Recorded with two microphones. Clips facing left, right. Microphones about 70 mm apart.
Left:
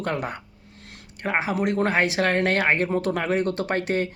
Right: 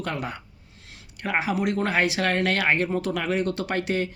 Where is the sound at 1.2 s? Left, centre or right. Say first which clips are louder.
Left 1 dB; left.